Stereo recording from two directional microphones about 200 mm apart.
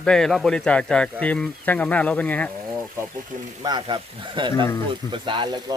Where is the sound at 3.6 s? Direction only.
20° right (ahead or behind).